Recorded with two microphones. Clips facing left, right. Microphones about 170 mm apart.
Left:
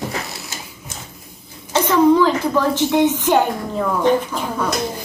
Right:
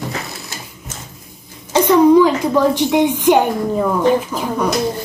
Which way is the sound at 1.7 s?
15° right (ahead or behind).